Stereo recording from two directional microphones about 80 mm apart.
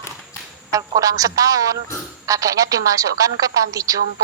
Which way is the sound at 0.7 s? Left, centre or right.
Right.